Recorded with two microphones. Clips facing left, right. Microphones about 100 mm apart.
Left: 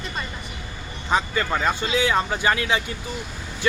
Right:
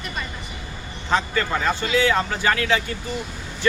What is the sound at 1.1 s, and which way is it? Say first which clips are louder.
A man's voice: right 1 dB; 15° left (ahead or behind).